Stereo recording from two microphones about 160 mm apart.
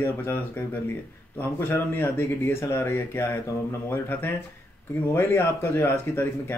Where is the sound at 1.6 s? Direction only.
15° left (ahead or behind).